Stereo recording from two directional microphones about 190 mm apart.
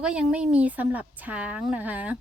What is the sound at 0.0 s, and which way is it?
A woman's voice, 5° right (ahead or behind).